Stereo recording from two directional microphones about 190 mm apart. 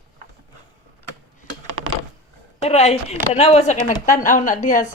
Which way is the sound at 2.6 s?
35° left (ahead or behind).